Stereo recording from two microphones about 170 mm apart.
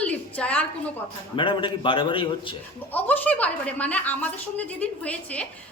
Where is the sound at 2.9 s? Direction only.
10° left (ahead or behind).